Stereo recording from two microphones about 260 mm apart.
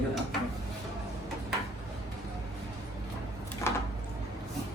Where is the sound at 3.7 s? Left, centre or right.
Centre.